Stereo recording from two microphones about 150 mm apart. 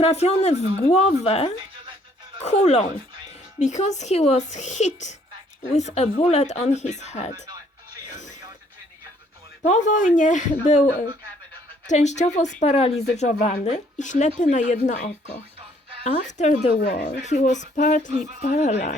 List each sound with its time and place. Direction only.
0.0 s a woman's voice: 45° left (ahead or behind)
9.6 s speech: 55° left (ahead or behind)
11.9 s a woman's voice: 50° left (ahead or behind)